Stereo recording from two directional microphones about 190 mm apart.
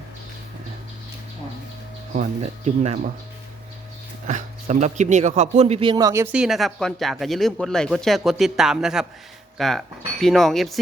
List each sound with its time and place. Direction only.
2.1 s speech: 40° right (ahead or behind)
4.3 s speech: 40° right (ahead or behind); by 6.2 s 20° right (ahead or behind)
6.3 s speech: centre (ahead or behind)